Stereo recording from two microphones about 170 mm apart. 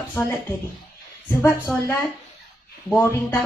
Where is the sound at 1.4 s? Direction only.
15° left (ahead or behind).